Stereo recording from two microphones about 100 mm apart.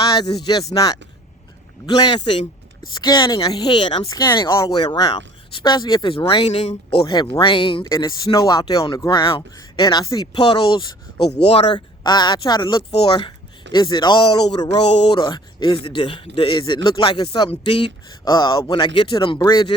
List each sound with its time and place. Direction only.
0.1 s speech: 45° left (ahead or behind); by 4.1 s 60° left (ahead or behind)
4.4 s speech: 35° left (ahead or behind)
4.8 s speech: 45° left (ahead or behind); by 7.0 s 80° left
7.0 s speech: 50° left (ahead or behind)
7.3 s speech: 60° left (ahead or behind)
7.9 s speech: 40° left (ahead or behind)
9.0 s speech: 60° left (ahead or behind)
9.8 s speech: 40° left (ahead or behind)
10.4 s speech: 60° left (ahead or behind); by 11.6 s 90° left
11.7 s speech: 45° left (ahead or behind)
12.9 s speech: 65° left (ahead or behind); by 18.6 s 45° left (ahead or behind)
18.8 s speech: 60° left (ahead or behind)